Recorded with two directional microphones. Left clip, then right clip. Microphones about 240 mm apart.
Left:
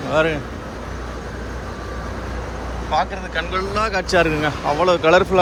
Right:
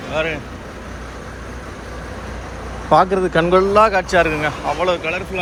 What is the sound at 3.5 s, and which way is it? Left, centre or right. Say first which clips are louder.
Speech: right 8 dB; centre.